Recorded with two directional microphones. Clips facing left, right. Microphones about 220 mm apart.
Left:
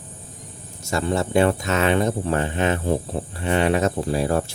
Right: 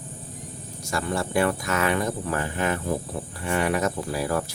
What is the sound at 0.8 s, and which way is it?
Speech, 25° left (ahead or behind).